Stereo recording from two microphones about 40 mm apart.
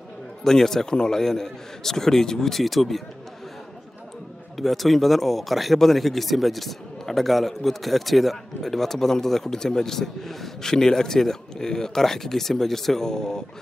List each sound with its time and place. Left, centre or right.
0.4 s speech: centre
4.6 s speech: centre